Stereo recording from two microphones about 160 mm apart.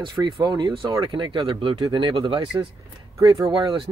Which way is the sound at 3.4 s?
30° right (ahead or behind).